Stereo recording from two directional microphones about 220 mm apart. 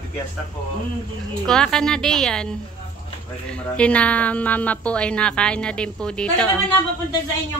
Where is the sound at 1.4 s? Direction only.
5° left (ahead or behind).